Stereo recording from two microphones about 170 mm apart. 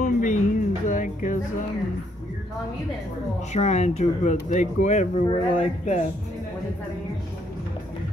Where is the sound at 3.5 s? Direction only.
40° left (ahead or behind).